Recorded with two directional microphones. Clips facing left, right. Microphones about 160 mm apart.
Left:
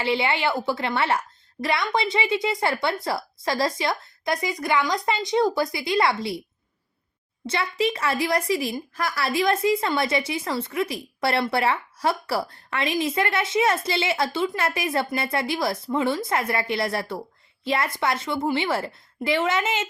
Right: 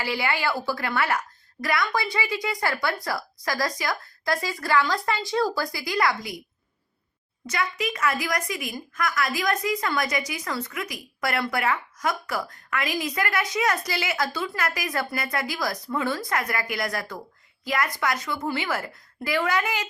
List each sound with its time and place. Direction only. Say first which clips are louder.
0.0 s a woman's voice: left 3 dB; 25° left (ahead or behind)
7.4 s a woman's voice: left 4 dB; 30° left (ahead or behind)